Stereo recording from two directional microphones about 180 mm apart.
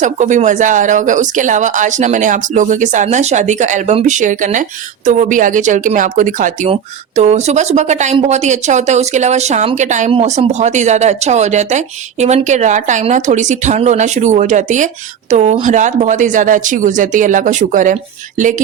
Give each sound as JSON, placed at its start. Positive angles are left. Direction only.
{"t": 0.0, "sound": "speech", "side_deg": -40}